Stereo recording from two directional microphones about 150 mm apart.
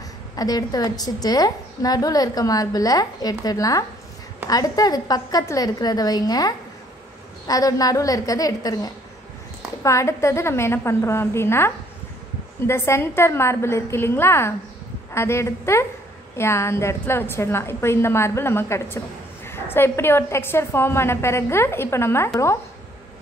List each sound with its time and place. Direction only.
0.4 s a woman's voice: 25° left (ahead or behind)